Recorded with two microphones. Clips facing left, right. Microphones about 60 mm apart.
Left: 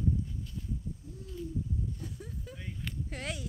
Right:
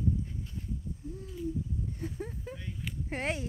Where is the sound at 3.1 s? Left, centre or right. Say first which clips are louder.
Right 8 dB; right.